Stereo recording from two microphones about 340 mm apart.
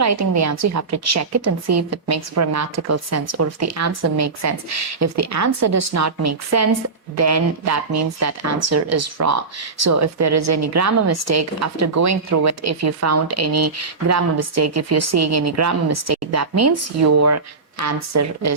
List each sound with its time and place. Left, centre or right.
0.0 s speech: right